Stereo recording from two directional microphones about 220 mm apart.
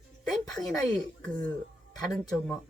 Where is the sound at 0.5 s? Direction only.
15° left (ahead or behind).